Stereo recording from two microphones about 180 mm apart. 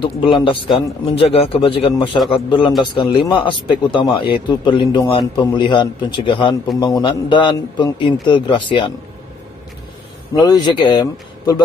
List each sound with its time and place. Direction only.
0.0 s a man's voice: 30° left (ahead or behind)
10.3 s a man's voice: 20° left (ahead or behind)